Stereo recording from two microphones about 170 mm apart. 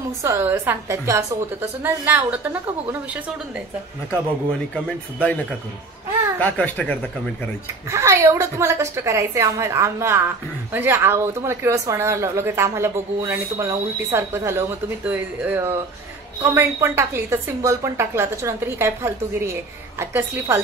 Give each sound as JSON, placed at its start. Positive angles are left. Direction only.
{"t": 0.2, "sound": "a woman's voice", "side_deg": -15}
{"t": 6.4, "sound": "speech", "side_deg": 10}
{"t": 7.9, "sound": "a woman's voice", "side_deg": -15}